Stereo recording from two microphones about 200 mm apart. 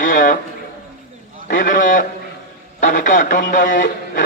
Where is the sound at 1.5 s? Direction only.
45° left (ahead or behind).